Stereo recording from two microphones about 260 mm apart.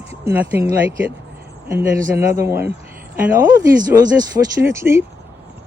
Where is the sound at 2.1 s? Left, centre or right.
Centre.